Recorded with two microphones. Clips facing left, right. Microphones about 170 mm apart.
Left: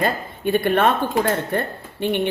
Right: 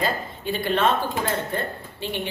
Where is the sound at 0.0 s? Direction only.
55° left (ahead or behind).